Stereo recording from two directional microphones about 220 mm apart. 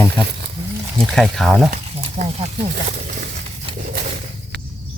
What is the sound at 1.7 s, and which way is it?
Snake, 40° right (ahead or behind).